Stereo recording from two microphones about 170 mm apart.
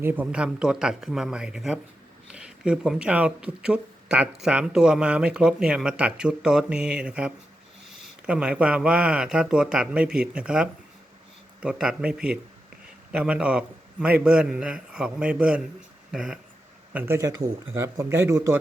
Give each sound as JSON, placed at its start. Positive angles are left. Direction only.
{"t": 0.0, "sound": "speech", "side_deg": -10}